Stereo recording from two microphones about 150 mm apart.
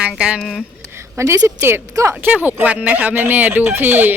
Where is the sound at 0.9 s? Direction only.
20° right (ahead or behind).